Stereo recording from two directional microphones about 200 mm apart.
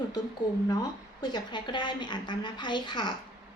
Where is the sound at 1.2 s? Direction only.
25° left (ahead or behind).